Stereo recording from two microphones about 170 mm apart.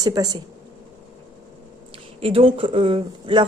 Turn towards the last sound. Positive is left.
turn(degrees=-30)  # may be behind; listen again after turning